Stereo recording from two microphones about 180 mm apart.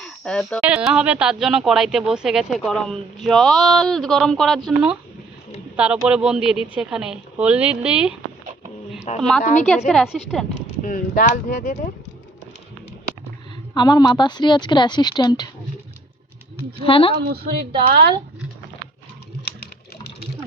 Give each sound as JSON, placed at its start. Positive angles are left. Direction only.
{"t": 0.0, "sound": "a sound", "side_deg": 5}
{"t": 0.6, "sound": "speech", "side_deg": -5}
{"t": 9.0, "sound": "a sound", "side_deg": 40}
{"t": 9.4, "sound": "speech", "side_deg": 45}
{"t": 9.6, "sound": "speech", "side_deg": 0}
{"t": 10.5, "sound": "speech", "side_deg": 45}
{"t": 13.7, "sound": "a woman's voice", "side_deg": 25}
{"t": 16.8, "sound": "speech", "side_deg": 30}
{"t": 17.2, "sound": "a woman's voice", "side_deg": -60}